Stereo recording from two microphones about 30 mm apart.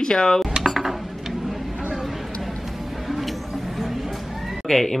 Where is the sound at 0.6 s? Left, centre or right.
Centre.